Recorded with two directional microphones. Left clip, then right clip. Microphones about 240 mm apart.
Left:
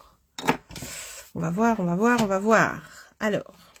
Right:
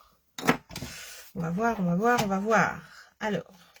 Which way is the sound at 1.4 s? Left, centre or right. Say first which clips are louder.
Left 4 dB; left.